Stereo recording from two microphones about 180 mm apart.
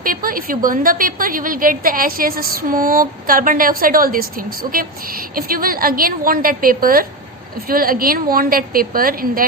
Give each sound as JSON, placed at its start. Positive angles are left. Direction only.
{"t": 0.0, "sound": "a woman's voice", "side_deg": -50}